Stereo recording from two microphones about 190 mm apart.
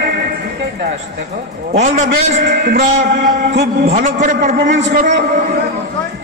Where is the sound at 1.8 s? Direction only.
40° right (ahead or behind).